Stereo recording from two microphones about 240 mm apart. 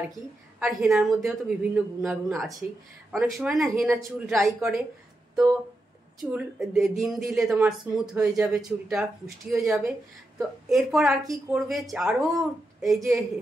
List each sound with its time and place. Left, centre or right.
0.7 s speech: centre